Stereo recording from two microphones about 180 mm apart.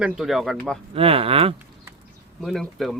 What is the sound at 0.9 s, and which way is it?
Speech, 30° right (ahead or behind).